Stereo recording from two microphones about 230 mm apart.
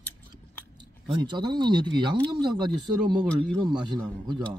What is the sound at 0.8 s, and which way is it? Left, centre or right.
Speech, centre.